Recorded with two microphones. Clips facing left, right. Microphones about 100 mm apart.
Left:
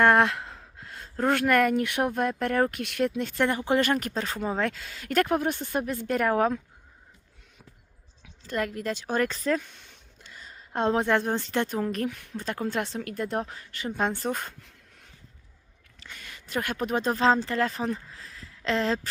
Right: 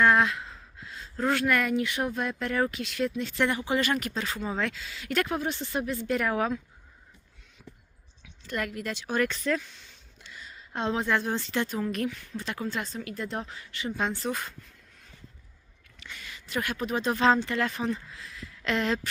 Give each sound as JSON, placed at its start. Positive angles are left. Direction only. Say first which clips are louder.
{"t": 0.0, "sound": "speech", "louder": "left 2 dB", "side_deg": 55}
{"t": 8.2, "sound": "speech", "louder": "left 3 dB", "side_deg": 35}
{"t": 12.1, "sound": "speech", "louder": "left 2 dB", "side_deg": 55}
{"t": 16.0, "sound": "speech", "louder": "right 1 dB", "side_deg": 50}